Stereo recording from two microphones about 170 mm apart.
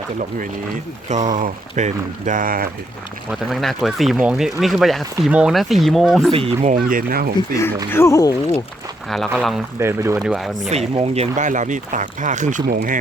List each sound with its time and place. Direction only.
1.1 s speech: 50° right (ahead or behind)
3.5 s speech: centre (ahead or behind)
6.3 s speech: 40° right (ahead or behind)
6.7 s speech: 60° right (ahead or behind)
7.3 s speech: 20° left (ahead or behind)
9.0 s speech: centre (ahead or behind)
9.8 s speech: 15° right (ahead or behind)
10.2 s speech: centre (ahead or behind)
10.6 s speech: 40° right (ahead or behind)